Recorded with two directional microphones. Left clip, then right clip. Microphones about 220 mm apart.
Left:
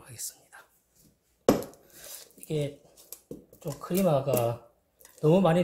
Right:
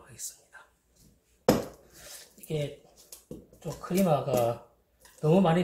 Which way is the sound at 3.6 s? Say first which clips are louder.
Left 1 dB; 45° left (ahead or behind).